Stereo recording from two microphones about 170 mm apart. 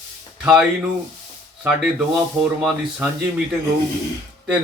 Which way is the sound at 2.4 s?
5° right (ahead or behind).